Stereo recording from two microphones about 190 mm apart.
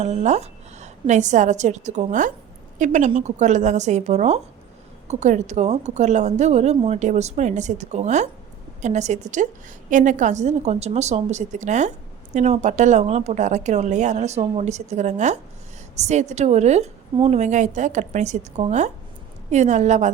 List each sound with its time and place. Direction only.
0.0 s a woman's voice: 35° right (ahead or behind)